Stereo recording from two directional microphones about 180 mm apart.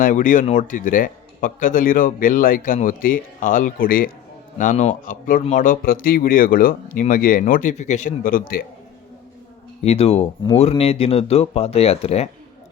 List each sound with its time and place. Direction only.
0.0 s a man's voice: 45° left (ahead or behind)
9.8 s speech: 35° left (ahead or behind)